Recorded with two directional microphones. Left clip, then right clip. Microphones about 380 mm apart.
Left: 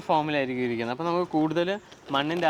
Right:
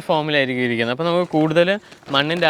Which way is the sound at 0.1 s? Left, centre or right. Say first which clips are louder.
Right 6 dB; right.